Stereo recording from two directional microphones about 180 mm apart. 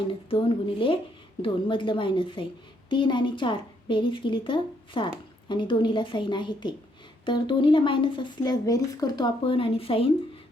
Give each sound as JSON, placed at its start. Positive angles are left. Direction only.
{"t": 0.3, "sound": "speech", "side_deg": 30}